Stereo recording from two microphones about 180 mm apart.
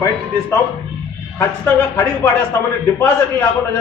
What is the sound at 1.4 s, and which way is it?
A man's voice, 15° left (ahead or behind).